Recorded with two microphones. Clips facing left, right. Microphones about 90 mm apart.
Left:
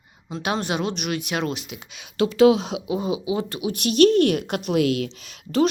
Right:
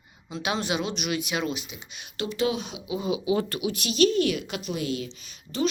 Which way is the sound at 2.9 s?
45° left (ahead or behind).